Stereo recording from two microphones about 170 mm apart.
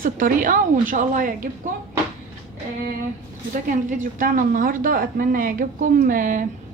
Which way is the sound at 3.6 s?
55° right (ahead or behind).